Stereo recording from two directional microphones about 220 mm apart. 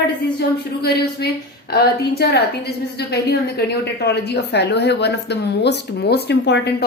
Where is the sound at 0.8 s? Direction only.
45° left (ahead or behind).